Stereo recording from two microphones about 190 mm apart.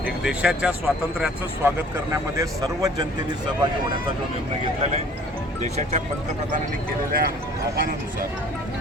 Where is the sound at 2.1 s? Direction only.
15° right (ahead or behind).